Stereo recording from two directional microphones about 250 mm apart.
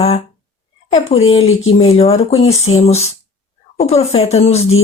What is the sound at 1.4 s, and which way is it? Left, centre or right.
Speech, left.